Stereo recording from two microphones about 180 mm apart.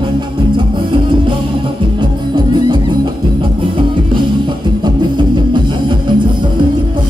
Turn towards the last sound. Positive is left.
turn(degrees=-25)  # may be behind; listen again after turning